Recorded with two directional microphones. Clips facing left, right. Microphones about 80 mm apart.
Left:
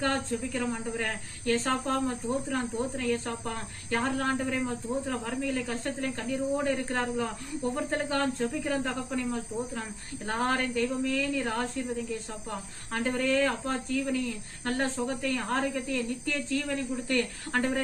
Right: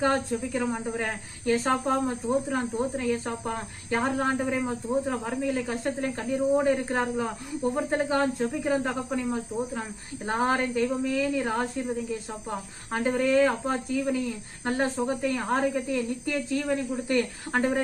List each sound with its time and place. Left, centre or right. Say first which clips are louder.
0.0 s speech: right 4 dB; centre
12.9 s speech: right 4 dB; centre